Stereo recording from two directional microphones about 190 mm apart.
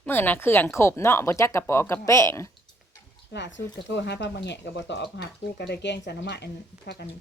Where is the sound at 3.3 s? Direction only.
65° left (ahead or behind).